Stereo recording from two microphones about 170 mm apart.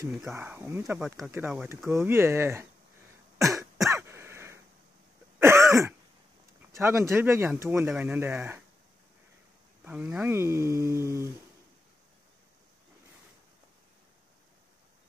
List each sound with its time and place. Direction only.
0.1 s speech: 5° right (ahead or behind)
0.4 s speech: 15° right (ahead or behind)
3.3 s cough: 20° right (ahead or behind)
3.9 s throat clearing: 15° right (ahead or behind)
6.7 s speech: 15° right (ahead or behind)
9.8 s speech: 10° right (ahead or behind)